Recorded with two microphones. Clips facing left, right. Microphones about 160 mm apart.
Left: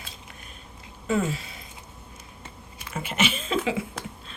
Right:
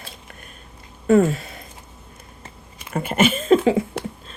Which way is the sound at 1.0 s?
55° right (ahead or behind).